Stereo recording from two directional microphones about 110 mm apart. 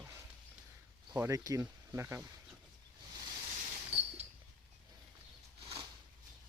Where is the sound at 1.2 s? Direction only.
30° right (ahead or behind).